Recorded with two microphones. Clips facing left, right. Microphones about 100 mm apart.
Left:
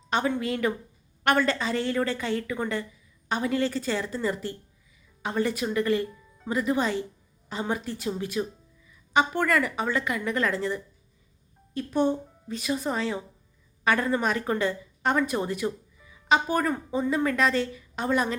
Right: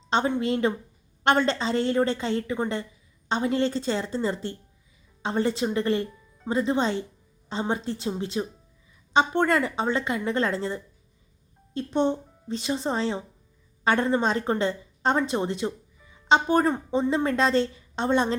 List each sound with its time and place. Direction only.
0.1 s a woman's voice: 25° right (ahead or behind)